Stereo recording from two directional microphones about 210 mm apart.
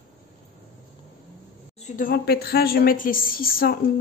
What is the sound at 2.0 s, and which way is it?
A woman's voice, 45° left (ahead or behind).